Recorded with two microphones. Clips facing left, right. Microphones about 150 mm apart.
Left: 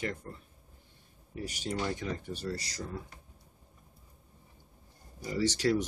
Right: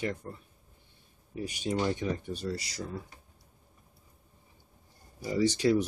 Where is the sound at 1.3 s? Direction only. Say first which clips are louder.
Right 4 dB; 20° right (ahead or behind).